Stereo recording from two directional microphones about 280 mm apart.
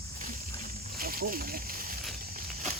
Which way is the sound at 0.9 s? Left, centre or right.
Right.